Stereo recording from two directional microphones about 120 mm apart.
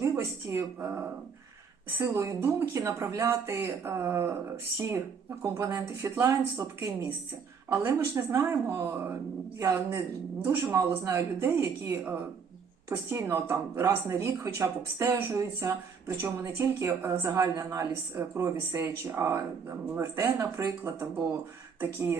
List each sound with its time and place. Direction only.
0.0 s a woman's voice: 25° right (ahead or behind)